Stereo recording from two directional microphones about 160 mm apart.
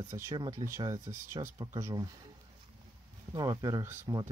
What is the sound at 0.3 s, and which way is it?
Speech, 25° right (ahead or behind).